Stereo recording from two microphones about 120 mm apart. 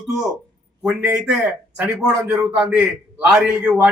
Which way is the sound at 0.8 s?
5° right (ahead or behind).